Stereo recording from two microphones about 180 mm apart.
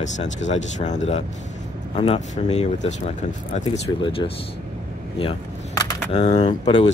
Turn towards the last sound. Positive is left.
turn(degrees=35)  # may be behind; listen again after turning